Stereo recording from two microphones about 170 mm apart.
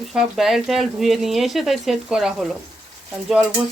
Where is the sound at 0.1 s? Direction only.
Centre (ahead or behind).